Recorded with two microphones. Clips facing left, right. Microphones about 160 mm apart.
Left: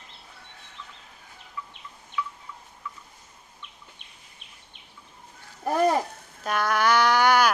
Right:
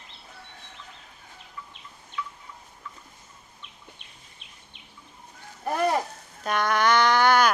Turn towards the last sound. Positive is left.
turn(degrees=10)  # may be behind; listen again after turning